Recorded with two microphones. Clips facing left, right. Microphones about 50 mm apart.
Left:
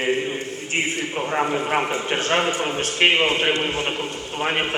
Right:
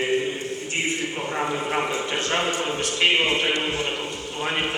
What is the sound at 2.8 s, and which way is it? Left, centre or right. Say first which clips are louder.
A man's voice: left 3 dB; left.